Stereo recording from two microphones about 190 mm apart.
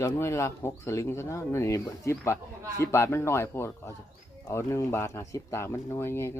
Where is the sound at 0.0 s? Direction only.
15° left (ahead or behind).